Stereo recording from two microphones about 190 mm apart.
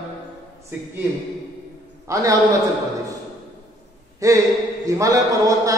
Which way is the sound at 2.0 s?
15° right (ahead or behind).